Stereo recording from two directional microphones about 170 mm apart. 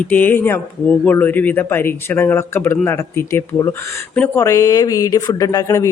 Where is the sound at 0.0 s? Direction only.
10° left (ahead or behind).